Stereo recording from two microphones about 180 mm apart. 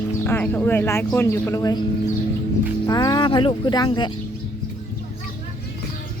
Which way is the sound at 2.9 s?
20° left (ahead or behind).